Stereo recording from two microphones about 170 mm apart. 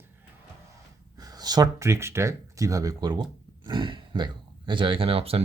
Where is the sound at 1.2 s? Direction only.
25° right (ahead or behind).